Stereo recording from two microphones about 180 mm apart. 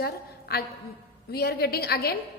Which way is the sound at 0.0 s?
60° left (ahead or behind).